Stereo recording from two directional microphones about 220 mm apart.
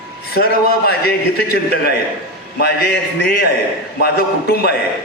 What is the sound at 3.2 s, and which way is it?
A man's voice, 45° left (ahead or behind).